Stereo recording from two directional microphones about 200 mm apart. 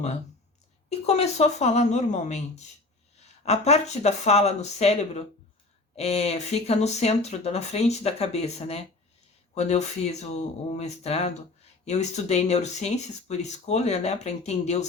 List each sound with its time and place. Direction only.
0.9 s speech: 30° left (ahead or behind)